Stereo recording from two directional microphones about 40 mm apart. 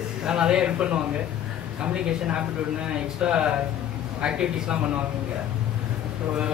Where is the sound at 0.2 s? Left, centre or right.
Right.